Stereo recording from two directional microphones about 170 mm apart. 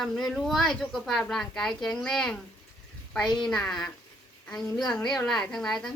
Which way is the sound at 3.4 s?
5° left (ahead or behind).